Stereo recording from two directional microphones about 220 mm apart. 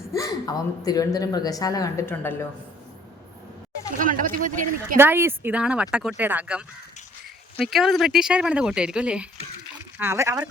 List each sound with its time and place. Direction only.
0.1 s a woman's voice: 15° left (ahead or behind)
3.9 s speech: 35° right (ahead or behind)
4.9 s speech: 10° right (ahead or behind)